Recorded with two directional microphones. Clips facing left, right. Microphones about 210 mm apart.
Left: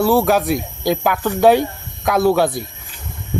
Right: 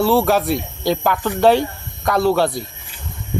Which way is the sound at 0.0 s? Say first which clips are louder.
Left 1 dB; 15° left (ahead or behind).